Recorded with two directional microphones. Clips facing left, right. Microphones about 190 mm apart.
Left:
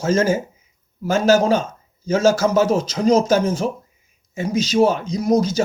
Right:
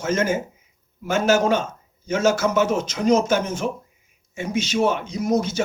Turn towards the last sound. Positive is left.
turn(degrees=35)  # may be behind; listen again after turning